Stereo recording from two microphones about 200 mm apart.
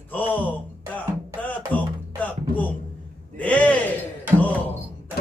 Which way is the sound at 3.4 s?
5° left (ahead or behind).